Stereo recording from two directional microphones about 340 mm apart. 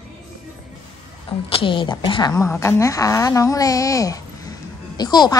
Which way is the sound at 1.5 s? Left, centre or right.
Centre.